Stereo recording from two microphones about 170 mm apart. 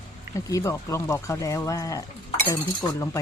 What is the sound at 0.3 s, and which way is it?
Speech, 20° left (ahead or behind).